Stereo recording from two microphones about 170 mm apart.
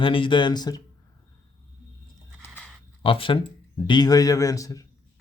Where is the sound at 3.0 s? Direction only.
30° left (ahead or behind).